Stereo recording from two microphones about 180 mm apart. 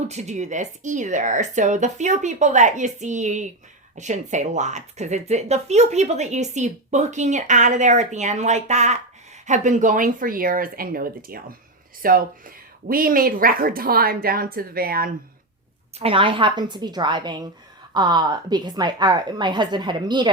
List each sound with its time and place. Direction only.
0.1 s speech: 40° right (ahead or behind); by 15.1 s 55° right (ahead or behind)
16.0 s a woman's voice: 30° right (ahead or behind)